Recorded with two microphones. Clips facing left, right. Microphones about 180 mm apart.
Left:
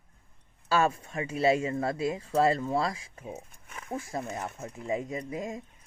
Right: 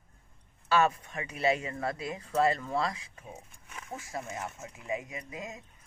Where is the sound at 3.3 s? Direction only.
50° left (ahead or behind).